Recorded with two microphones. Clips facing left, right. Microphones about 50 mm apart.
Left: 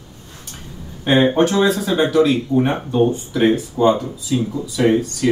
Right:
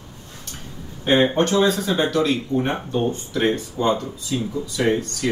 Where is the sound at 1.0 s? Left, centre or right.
Centre.